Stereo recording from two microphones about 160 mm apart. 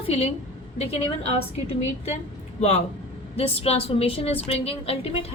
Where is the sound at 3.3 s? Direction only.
35° left (ahead or behind).